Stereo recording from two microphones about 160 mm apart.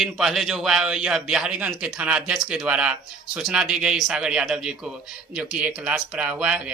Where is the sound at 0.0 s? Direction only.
Centre (ahead or behind).